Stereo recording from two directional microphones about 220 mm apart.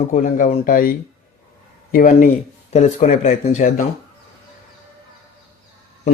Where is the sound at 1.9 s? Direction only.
40° left (ahead or behind).